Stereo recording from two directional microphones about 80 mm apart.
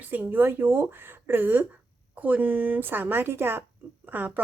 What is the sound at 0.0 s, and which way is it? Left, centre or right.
Speech, right.